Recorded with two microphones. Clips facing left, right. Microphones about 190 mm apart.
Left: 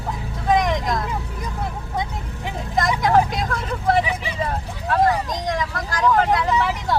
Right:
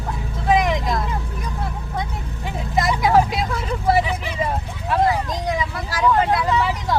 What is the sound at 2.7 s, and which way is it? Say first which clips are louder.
Vehicle: right 1 dB; 5° right (ahead or behind).